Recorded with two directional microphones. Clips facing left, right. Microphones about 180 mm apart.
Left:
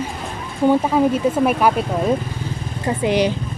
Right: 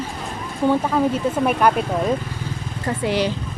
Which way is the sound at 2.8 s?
20° left (ahead or behind).